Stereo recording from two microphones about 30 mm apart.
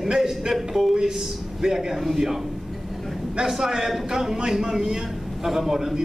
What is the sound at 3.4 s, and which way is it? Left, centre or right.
A man's voice, centre.